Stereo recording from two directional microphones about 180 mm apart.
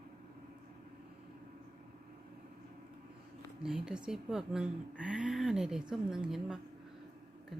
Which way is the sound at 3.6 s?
5° right (ahead or behind).